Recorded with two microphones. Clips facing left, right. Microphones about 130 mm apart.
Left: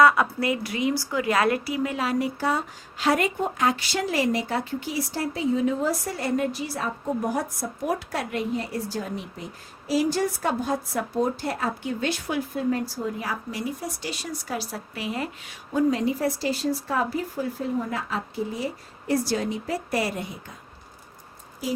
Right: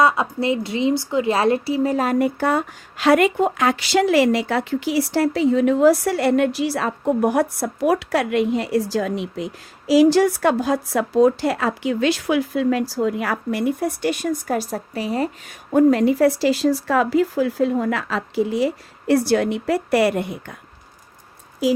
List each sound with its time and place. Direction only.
0.0 s a woman's voice: 25° right (ahead or behind)
15.7 s speech: 65° right (ahead or behind)